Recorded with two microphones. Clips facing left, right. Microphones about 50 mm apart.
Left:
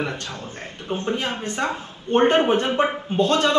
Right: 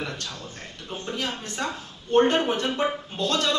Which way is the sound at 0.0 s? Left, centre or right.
Left.